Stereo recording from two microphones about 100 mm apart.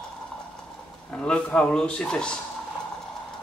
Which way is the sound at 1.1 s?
10° left (ahead or behind).